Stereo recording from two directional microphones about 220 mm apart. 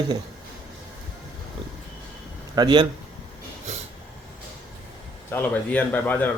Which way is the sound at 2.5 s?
20° right (ahead or behind).